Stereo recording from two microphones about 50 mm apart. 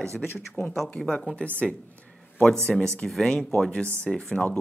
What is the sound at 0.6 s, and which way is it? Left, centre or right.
Speech, left.